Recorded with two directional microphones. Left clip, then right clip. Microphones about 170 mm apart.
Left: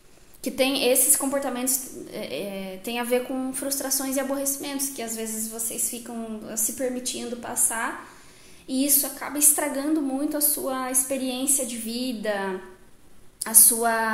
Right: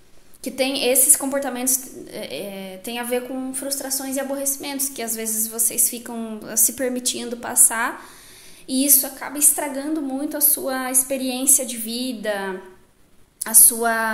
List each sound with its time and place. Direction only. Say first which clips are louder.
0.4 s a woman's voice: right 1 dB; 5° right (ahead or behind)
9.3 s a woman's voice: right 1 dB; 5° right (ahead or behind)
10.6 s a woman's voice: right 3 dB; 25° right (ahead or behind)